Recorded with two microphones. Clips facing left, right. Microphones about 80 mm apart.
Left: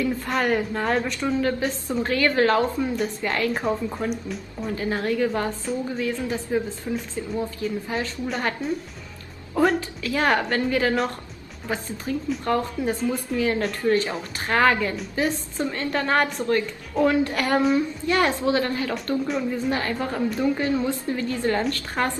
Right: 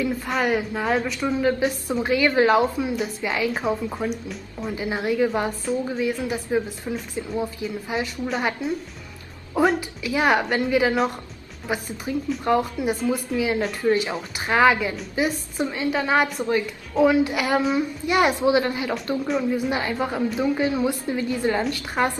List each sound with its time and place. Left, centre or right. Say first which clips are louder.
0.3 s a woman's voice: even; centre
4.7 s a woman's voice: right 1 dB; centre